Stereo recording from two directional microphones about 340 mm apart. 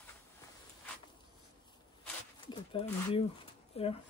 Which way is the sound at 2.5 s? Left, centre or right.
Centre.